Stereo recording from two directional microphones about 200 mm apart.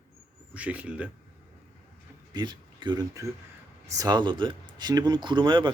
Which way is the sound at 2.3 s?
20° right (ahead or behind).